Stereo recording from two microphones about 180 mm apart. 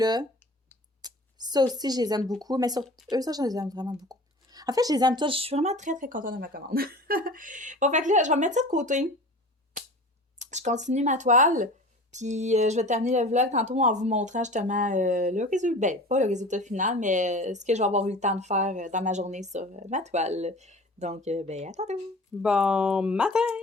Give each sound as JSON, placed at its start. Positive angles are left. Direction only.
{"t": 0.0, "sound": "speech", "side_deg": -20}
{"t": 10.5, "sound": "speech", "side_deg": -40}
{"t": 22.4, "sound": "speech", "side_deg": -5}